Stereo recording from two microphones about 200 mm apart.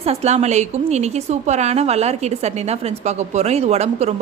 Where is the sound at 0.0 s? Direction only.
30° right (ahead or behind).